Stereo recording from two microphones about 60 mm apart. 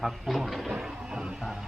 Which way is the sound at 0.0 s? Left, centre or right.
Centre.